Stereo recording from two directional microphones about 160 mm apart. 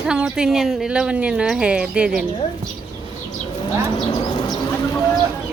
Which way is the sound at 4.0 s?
30° left (ahead or behind).